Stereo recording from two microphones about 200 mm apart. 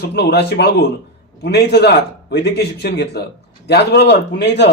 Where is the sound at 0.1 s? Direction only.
55° left (ahead or behind).